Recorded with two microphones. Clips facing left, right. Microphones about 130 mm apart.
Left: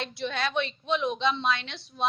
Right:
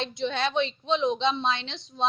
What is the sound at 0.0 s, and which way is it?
A woman's voice, 20° right (ahead or behind).